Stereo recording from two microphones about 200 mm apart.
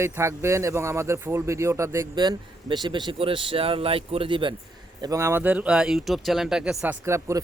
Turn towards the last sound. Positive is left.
turn(degrees=-15)  # may be behind; listen again after turning